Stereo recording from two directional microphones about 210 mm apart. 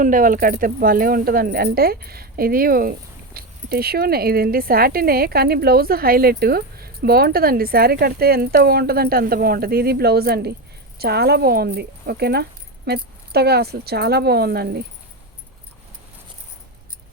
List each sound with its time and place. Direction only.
0.0 s speech: 40° right (ahead or behind)